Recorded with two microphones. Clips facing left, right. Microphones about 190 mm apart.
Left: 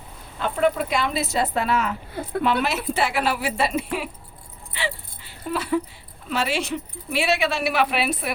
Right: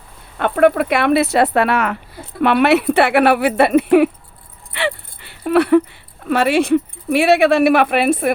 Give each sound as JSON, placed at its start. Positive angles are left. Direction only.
{"t": 0.3, "sound": "speech", "side_deg": -65}
{"t": 4.7, "sound": "a sound", "side_deg": -65}
{"t": 6.2, "sound": "speech", "side_deg": -60}